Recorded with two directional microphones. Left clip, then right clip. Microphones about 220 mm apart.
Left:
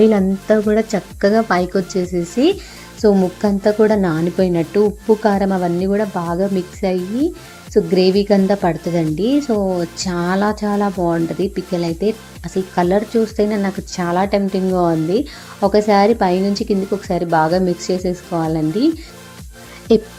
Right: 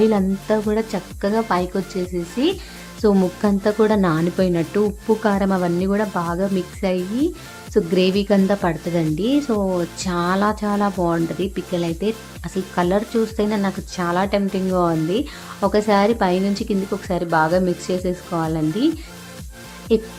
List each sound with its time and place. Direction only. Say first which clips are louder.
0.0 s a woman's voice: left 4 dB; 10° left (ahead or behind)
3.2 s a woman's voice: left 2 dB; centre (ahead or behind)
19.9 s music: left 5 dB; 30° left (ahead or behind)